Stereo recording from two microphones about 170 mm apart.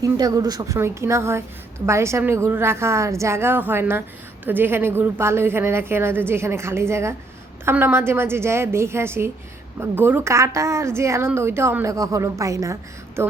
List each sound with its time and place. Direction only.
0.0 s a woman's voice: 20° right (ahead or behind)